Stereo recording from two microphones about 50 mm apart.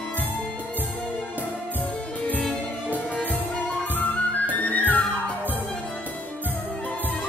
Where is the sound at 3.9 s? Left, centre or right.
Left.